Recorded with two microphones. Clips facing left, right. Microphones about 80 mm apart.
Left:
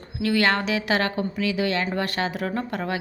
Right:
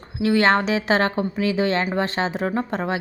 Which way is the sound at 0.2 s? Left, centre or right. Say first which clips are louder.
Right 4 dB; right.